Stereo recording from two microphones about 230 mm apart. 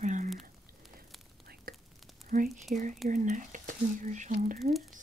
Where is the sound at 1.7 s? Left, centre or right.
Right.